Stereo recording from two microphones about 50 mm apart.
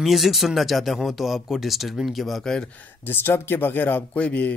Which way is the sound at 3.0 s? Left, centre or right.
Left.